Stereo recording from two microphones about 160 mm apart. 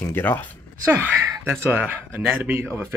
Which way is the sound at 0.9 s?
10° right (ahead or behind).